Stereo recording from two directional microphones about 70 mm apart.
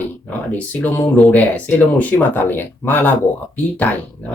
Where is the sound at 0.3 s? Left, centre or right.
Left.